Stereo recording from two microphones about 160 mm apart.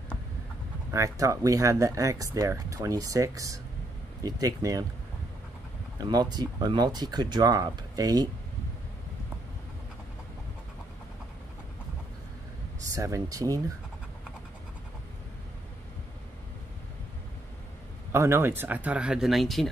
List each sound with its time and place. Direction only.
0.9 s speech: 20° right (ahead or behind)
5.9 s speech: 25° right (ahead or behind)
12.9 s speech: 20° right (ahead or behind)
18.1 s speech: 15° right (ahead or behind); by 19.7 s centre (ahead or behind)